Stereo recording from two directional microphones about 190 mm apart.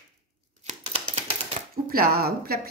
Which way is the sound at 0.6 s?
40° right (ahead or behind).